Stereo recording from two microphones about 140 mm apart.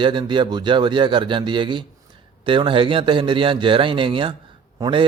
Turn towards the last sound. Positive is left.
turn(degrees=-35)  # may be behind; listen again after turning